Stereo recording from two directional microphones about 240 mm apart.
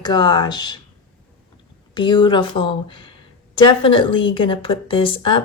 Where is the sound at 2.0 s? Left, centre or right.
Centre.